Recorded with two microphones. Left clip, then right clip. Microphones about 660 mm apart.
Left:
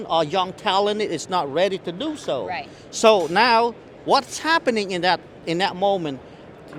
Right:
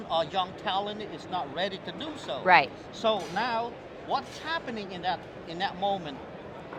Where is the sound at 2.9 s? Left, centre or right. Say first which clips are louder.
Left 13 dB; left.